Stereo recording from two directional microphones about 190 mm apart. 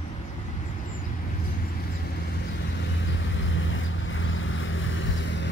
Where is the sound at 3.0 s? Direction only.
80° left.